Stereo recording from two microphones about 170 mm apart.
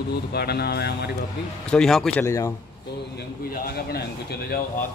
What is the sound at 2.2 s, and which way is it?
Speech, 15° left (ahead or behind).